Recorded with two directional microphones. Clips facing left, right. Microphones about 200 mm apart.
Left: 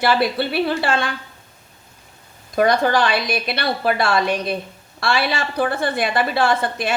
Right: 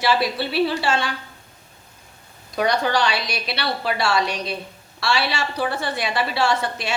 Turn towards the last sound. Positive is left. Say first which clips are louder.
# left 3 dB
turn(degrees=50)  # may be behind; listen again after turning